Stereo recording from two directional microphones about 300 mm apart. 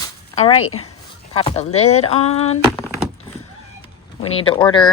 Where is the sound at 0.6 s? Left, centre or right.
Left.